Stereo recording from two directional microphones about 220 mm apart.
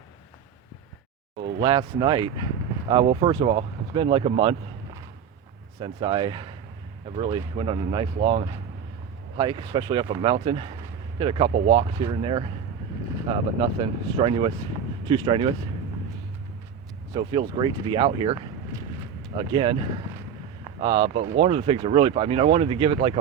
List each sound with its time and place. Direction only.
1.5 s speech: 20° right (ahead or behind)
5.8 s speech: 25° right (ahead or behind)
17.2 s speech: 25° right (ahead or behind)
19.4 s speech: 25° right (ahead or behind)